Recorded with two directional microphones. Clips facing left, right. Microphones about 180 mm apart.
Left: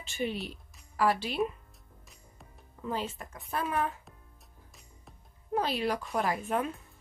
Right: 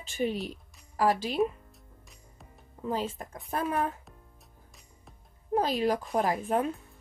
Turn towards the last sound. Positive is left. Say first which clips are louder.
# right 3 dB
turn(degrees=-35)  # may be behind; listen again after turning